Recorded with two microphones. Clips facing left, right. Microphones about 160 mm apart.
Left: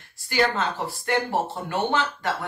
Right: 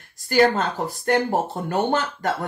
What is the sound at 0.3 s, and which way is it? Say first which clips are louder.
Speech: right 5 dB; 45° right (ahead or behind).